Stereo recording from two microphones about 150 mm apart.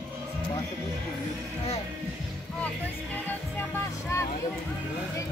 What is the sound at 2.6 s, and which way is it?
Speech, 10° left (ahead or behind).